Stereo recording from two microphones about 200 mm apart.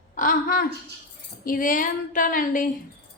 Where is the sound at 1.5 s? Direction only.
45° left (ahead or behind).